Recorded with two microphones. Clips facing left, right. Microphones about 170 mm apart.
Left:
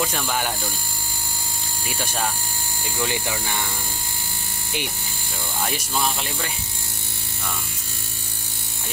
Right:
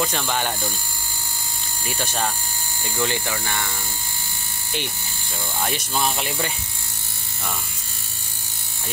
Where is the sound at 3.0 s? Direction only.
10° left (ahead or behind).